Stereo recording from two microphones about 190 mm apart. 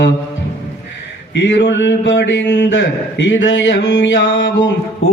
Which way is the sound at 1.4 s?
70° left (ahead or behind).